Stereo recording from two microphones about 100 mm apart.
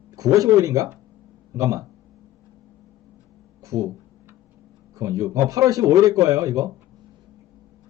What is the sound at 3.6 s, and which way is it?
Speech, 35° right (ahead or behind).